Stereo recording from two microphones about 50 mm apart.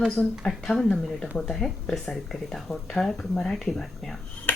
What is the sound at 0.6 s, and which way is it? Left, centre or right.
Speech, centre.